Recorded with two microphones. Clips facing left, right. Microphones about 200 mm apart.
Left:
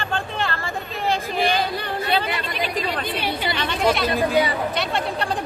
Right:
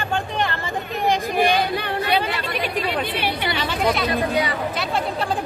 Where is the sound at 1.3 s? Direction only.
55° right (ahead or behind).